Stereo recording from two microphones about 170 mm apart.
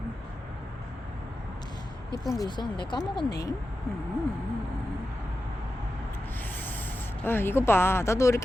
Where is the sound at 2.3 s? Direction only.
25° left (ahead or behind).